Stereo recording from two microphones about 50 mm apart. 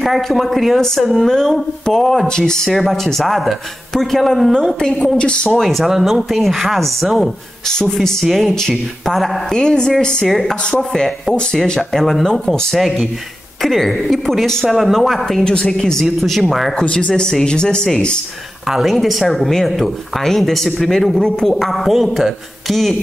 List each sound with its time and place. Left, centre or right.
0.0 s speech: centre
2.7 s a woman's voice: centre
5.5 s speech: centre
10.2 s speech: centre
11.6 s speech: centre
12.0 s speech: centre
15.4 s a woman's voice: centre
16.7 s a woman's voice: left
17.1 s a woman's voice: centre
18.7 s speech: centre